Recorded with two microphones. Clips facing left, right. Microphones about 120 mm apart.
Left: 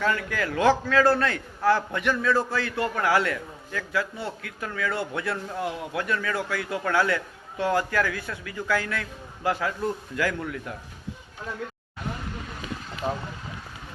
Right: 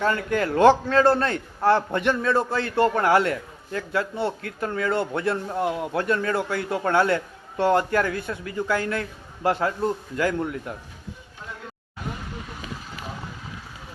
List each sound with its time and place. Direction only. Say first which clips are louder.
0.0 s a man's voice: right 3 dB; 30° right (ahead or behind)
13.0 s vehicle: left 10 dB; 55° left (ahead or behind)